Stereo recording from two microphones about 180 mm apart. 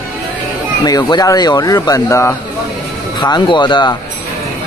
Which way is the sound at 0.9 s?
20° left (ahead or behind).